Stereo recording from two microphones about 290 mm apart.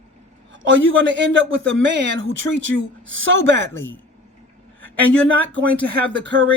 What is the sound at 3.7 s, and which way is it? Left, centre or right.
Speech, centre.